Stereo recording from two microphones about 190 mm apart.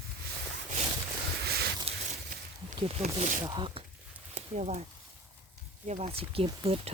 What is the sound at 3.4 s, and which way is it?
Speech, 25° right (ahead or behind).